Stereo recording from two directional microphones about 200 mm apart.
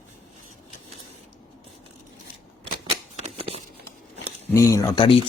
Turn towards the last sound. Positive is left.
turn(degrees=20)  # may be behind; listen again after turning